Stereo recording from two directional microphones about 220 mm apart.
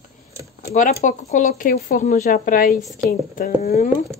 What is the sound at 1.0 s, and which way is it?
A woman's voice, 35° left (ahead or behind).